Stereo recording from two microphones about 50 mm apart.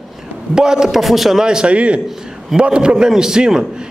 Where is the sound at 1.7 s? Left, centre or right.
Right.